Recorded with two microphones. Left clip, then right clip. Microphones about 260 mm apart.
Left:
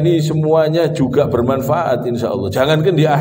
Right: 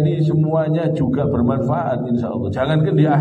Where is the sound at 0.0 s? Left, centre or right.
Left.